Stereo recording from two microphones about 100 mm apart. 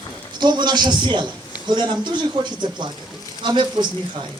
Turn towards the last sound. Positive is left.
turn(degrees=-50)  # may be behind; listen again after turning